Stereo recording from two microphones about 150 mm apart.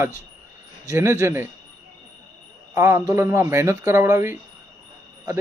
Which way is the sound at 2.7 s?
20° right (ahead or behind).